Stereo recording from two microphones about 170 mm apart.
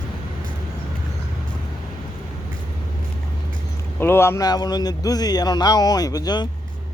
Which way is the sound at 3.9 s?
15° left (ahead or behind).